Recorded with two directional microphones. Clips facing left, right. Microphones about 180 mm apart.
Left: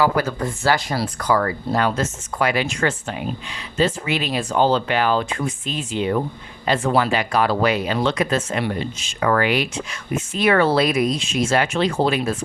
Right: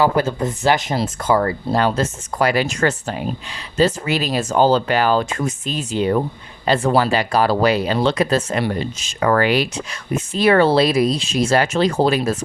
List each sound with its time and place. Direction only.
0.0 s speech: 25° right (ahead or behind)